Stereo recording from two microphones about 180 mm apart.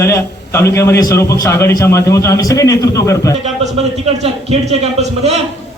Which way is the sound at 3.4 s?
40° right (ahead or behind).